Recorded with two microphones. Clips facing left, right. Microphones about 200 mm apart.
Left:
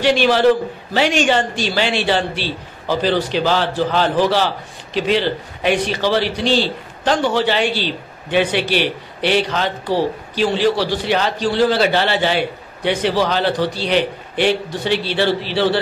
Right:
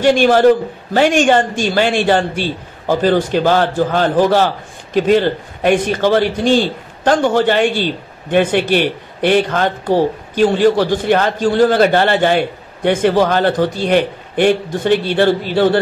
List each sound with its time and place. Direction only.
0.0 s a man's voice: 50° right (ahead or behind)